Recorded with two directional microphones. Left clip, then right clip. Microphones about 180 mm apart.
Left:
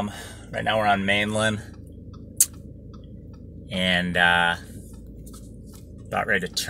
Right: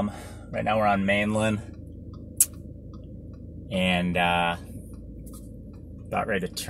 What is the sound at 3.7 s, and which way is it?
Speech, centre (ahead or behind).